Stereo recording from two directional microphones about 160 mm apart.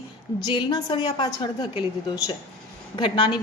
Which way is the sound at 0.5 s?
30° left (ahead or behind).